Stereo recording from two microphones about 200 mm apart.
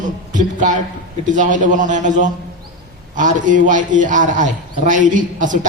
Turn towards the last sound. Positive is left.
turn(degrees=-40)  # may be behind; listen again after turning